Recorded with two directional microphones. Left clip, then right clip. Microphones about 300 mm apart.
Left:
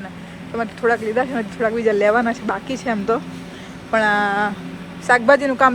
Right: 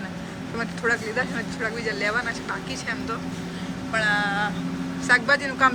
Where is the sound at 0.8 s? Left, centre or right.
Centre.